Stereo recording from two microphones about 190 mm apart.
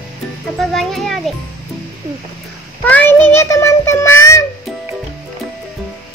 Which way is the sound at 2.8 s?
10° left (ahead or behind).